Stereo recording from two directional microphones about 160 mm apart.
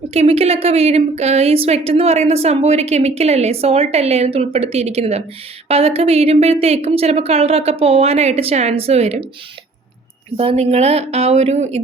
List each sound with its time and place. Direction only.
0.1 s a woman's voice: 40° right (ahead or behind)
10.3 s a woman's voice: 40° right (ahead or behind)